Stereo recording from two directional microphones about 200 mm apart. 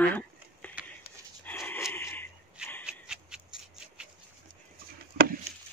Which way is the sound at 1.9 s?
10° left (ahead or behind).